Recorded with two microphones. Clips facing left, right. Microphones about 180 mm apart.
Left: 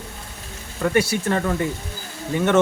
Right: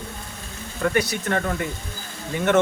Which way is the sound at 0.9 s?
30° left (ahead or behind).